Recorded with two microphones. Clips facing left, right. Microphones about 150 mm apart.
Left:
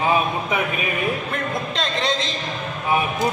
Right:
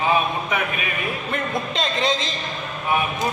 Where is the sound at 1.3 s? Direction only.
Centre (ahead or behind).